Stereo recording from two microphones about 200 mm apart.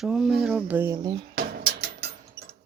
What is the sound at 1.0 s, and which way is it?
Speech, 20° right (ahead or behind).